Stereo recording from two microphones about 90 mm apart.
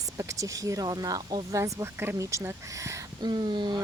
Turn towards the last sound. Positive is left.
turn(degrees=-55)  # may be behind; listen again after turning